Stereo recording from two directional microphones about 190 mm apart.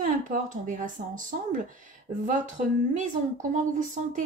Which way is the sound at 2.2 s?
40° right (ahead or behind).